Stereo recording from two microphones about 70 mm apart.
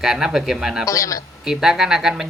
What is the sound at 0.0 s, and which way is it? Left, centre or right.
Speech, centre.